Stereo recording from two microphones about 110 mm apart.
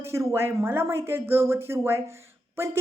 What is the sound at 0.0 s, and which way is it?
Speech, 25° right (ahead or behind).